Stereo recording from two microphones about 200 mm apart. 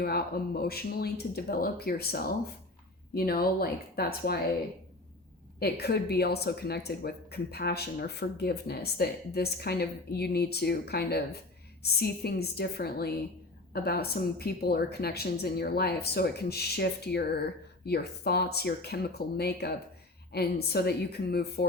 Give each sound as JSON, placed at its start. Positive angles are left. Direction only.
{"t": 0.0, "sound": "speech", "side_deg": 50}
{"t": 5.5, "sound": "speech", "side_deg": 50}